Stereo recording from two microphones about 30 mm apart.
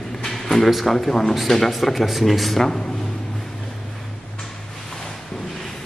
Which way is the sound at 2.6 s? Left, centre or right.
Centre.